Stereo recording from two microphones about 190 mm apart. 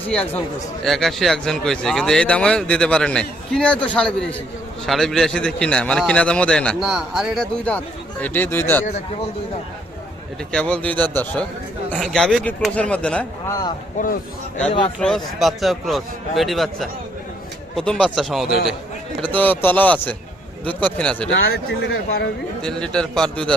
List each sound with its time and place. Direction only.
0.0 s a man's voice: 5° left (ahead or behind)
8.8 s a man's voice: 35° left (ahead or behind)
10.5 s a man's voice: 5° left (ahead or behind)
15.0 s a man's voice: centre (ahead or behind)
21.3 s speech: 60° left (ahead or behind)
22.6 s speech: 5° left (ahead or behind)